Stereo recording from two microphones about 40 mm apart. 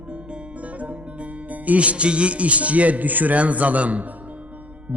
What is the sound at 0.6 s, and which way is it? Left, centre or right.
Music, right.